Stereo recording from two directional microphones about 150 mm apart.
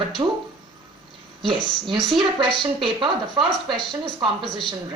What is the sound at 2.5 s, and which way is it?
Speech, 30° right (ahead or behind).